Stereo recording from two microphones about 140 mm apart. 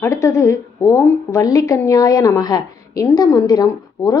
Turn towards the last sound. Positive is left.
turn(degrees=25)  # may be behind; listen again after turning